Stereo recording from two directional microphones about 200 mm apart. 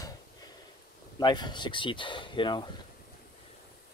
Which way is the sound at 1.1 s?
20° left (ahead or behind).